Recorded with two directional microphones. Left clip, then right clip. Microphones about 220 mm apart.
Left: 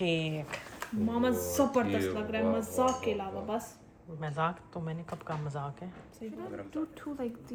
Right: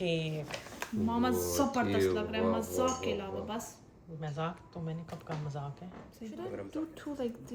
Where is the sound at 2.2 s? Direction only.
30° left (ahead or behind).